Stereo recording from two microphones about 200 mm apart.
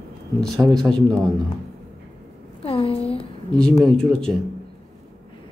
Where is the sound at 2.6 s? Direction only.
30° left (ahead or behind).